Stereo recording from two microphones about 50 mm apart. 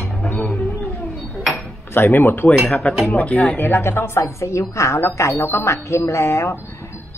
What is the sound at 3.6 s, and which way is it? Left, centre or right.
Speech, left.